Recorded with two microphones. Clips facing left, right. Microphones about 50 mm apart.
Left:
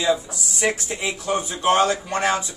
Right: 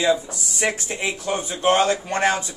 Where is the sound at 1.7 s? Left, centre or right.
Right.